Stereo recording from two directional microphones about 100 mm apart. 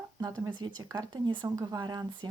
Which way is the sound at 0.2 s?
40° right (ahead or behind).